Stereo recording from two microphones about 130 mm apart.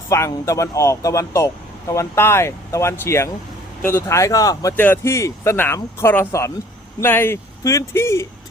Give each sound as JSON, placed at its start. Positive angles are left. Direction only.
{"t": 0.1, "sound": "speech", "side_deg": 20}